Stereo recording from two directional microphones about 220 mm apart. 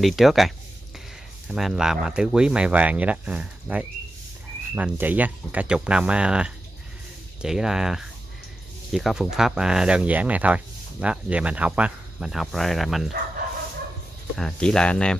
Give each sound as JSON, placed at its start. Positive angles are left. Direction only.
{"t": 0.0, "sound": "speech", "side_deg": 0}
{"t": 1.5, "sound": "speech", "side_deg": -5}
{"t": 14.3, "sound": "speech", "side_deg": 0}